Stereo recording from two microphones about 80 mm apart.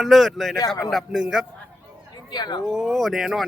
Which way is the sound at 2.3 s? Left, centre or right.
Left.